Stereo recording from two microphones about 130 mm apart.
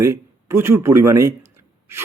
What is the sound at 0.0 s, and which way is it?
A man's voice, 20° right (ahead or behind).